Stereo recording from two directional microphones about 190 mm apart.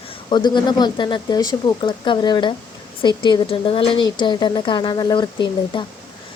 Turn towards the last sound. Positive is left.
turn(degrees=25)  # may be behind; listen again after turning